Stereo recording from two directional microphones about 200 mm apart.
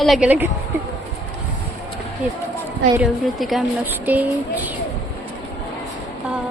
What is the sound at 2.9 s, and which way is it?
Speech, centre (ahead or behind).